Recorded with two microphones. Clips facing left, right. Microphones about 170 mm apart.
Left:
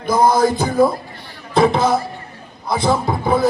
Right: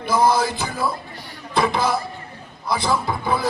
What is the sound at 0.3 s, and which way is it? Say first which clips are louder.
Music: left 9 dB; 45° left (ahead or behind).